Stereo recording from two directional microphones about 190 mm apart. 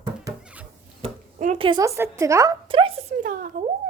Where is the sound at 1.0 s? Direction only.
35° right (ahead or behind).